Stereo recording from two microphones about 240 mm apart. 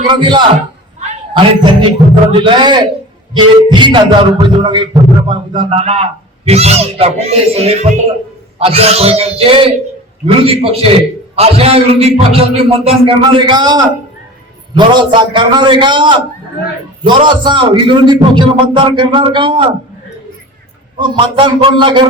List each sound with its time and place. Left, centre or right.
0.0 s a man's voice: centre
21.0 s a man's voice: centre